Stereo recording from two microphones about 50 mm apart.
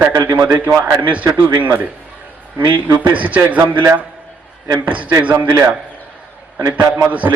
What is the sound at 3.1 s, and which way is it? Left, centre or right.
A man's voice, right.